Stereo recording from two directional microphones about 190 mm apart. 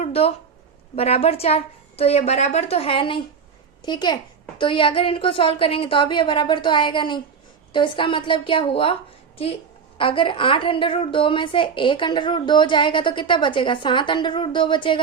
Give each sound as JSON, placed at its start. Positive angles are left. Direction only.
{"t": 0.0, "sound": "a woman's voice", "side_deg": 30}
{"t": 10.0, "sound": "a woman's voice", "side_deg": 25}